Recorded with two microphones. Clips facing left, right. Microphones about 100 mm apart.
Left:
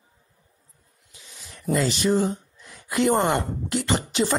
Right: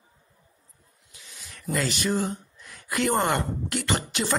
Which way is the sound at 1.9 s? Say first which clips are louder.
Left 5 dB; 30° left (ahead or behind).